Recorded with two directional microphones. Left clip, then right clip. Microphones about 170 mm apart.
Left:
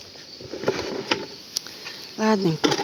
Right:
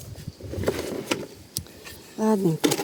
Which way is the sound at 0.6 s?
55° right (ahead or behind).